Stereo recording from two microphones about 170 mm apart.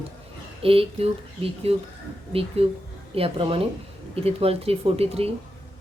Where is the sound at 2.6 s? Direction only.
35° right (ahead or behind).